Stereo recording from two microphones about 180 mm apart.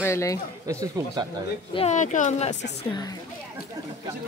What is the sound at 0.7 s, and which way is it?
Speech, 15° right (ahead or behind).